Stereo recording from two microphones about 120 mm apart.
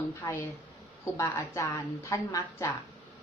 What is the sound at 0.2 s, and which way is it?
Speech, 25° left (ahead or behind).